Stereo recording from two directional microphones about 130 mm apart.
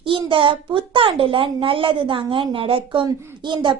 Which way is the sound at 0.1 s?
40° right (ahead or behind).